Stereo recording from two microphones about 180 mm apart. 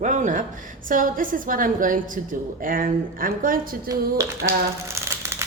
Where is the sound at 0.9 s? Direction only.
50° right (ahead or behind).